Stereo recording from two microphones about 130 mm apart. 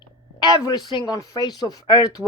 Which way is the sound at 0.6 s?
30° left (ahead or behind).